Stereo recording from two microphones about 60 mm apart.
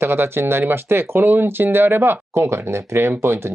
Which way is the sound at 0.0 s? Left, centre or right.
Right.